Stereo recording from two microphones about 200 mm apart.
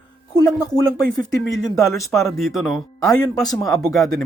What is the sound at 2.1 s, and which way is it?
Speech, centre (ahead or behind).